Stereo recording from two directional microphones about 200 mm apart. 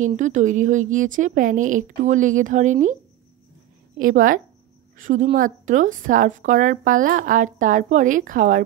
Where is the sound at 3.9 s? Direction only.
40° right (ahead or behind).